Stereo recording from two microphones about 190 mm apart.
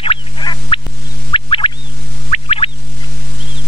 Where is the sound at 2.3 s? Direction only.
30° left (ahead or behind).